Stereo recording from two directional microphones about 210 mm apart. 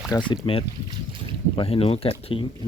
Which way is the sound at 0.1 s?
15° left (ahead or behind).